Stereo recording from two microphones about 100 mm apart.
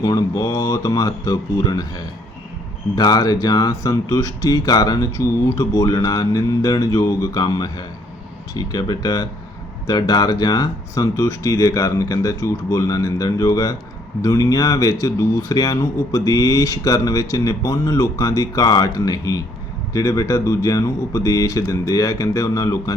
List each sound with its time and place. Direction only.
0.0 s speech: 40° left (ahead or behind)